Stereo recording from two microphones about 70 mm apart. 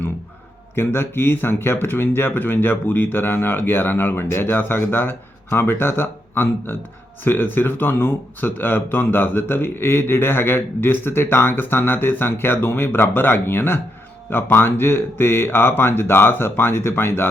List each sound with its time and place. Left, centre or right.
0.8 s speech: left